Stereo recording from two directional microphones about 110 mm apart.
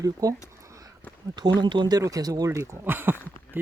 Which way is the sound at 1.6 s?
45° right (ahead or behind).